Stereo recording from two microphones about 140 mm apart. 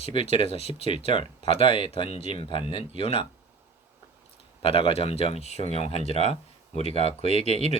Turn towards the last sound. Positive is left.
turn(degrees=50)  # may be behind; listen again after turning